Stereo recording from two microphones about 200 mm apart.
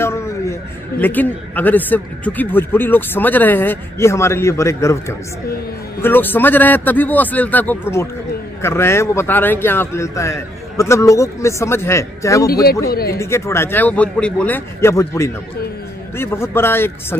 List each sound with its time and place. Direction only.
0.0 s a man's voice: 10° left (ahead or behind)
12.8 s speech: 50° left (ahead or behind)
13.2 s a man's voice: 15° left (ahead or behind)